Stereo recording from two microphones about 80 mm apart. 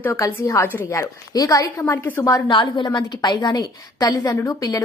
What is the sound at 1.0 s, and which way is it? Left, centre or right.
Speech, left.